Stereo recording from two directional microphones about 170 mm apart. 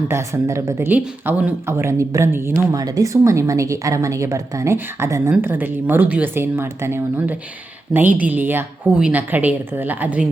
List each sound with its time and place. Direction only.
0.1 s a woman's voice: 15° right (ahead or behind)